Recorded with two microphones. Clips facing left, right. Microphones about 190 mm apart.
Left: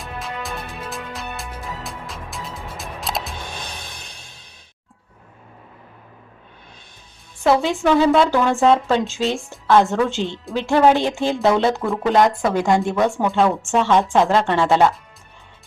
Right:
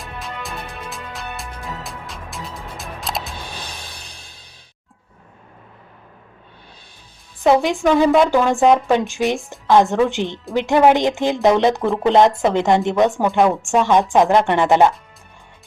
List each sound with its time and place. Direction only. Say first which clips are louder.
0.0 s music: left 1 dB; centre (ahead or behind)
7.4 s speech: right 2 dB; 15° right (ahead or behind)